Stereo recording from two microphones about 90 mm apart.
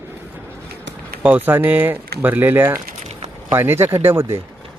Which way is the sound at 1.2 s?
20° right (ahead or behind).